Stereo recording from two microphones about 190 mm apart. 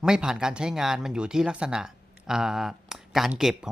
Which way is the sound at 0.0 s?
5° right (ahead or behind).